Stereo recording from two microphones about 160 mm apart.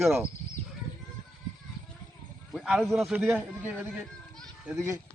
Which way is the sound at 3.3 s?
10° right (ahead or behind).